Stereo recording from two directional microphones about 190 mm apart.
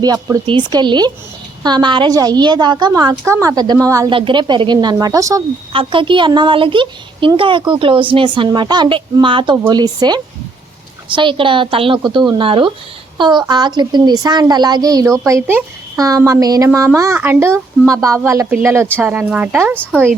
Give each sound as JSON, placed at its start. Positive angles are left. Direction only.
{"t": 0.0, "sound": "a child's voice", "side_deg": -20}